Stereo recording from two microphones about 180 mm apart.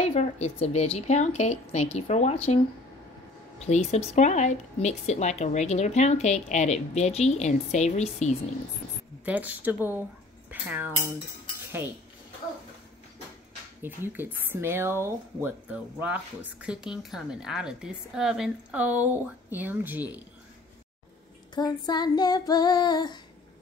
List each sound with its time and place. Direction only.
0.0 s a woman's voice: 35° left (ahead or behind)
3.5 s a woman's voice: 35° left (ahead or behind)
9.2 s speech: 10° right (ahead or behind)
13.8 s speech: 10° right (ahead or behind)
21.5 s child singing: 20° left (ahead or behind)